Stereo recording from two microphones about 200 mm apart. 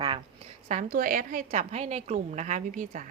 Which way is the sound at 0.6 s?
40° right (ahead or behind).